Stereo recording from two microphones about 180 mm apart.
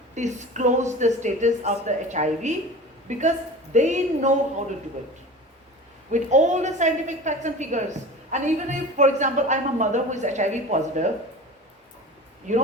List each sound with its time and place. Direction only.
0.2 s speech: 40° right (ahead or behind)
6.1 s speech: 40° right (ahead or behind)
12.5 s speech: 45° right (ahead or behind)